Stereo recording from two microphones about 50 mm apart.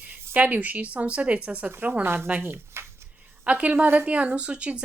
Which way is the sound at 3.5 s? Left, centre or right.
Right.